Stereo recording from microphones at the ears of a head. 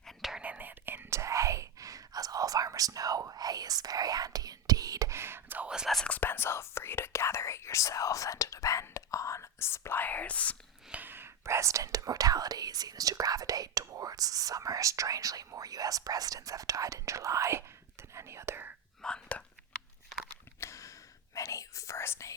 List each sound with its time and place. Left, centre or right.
0.9 s whispering: right
6.1 s whispering: left
11.4 s whispering: right
20.6 s a sound: left
21.3 s whispering: left